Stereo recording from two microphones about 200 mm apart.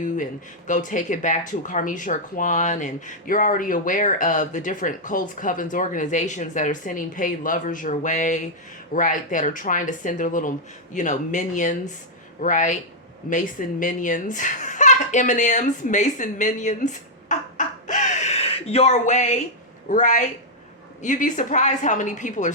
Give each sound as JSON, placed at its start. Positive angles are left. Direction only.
{"t": 0.7, "sound": "speech", "side_deg": 40}
{"t": 17.8, "sound": "a sound", "side_deg": 40}
{"t": 19.9, "sound": "speech", "side_deg": 40}